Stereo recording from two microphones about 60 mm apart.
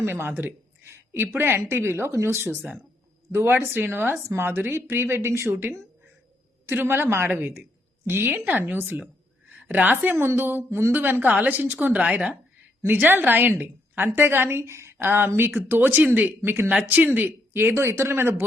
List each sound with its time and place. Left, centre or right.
0.0 s speech: right
3.3 s a woman's voice: right
15.0 s speech: right
16.4 s speech: right
16.8 s speech: right